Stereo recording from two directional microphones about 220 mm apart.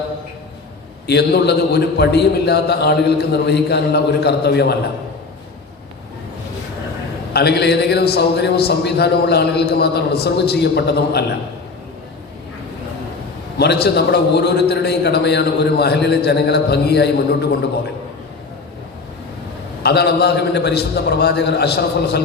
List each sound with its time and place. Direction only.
1.0 s a man's voice: 50° left (ahead or behind)
7.3 s a man's voice: 50° left (ahead or behind)
13.6 s a man's voice: 45° left (ahead or behind)
19.8 s a man's voice: 50° left (ahead or behind)